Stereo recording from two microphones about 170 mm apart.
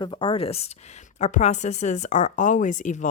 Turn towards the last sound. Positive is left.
turn(degrees=50)  # may be behind; listen again after turning